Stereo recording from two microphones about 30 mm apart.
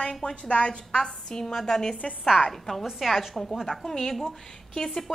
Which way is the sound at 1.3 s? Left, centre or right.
Centre.